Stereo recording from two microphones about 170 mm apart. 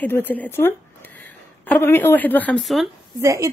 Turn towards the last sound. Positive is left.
turn(degrees=-20)  # may be behind; listen again after turning